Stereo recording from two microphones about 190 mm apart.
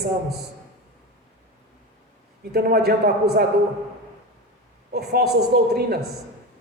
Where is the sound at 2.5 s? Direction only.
55° right (ahead or behind).